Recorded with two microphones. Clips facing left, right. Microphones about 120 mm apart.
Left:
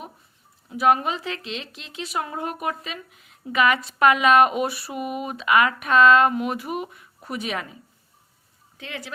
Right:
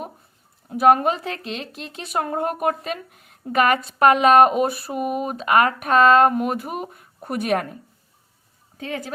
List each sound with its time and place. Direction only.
0.7 s speech: 45° right (ahead or behind)
8.8 s speech: 40° right (ahead or behind)